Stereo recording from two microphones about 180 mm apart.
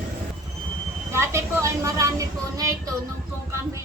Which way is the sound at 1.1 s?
15° right (ahead or behind).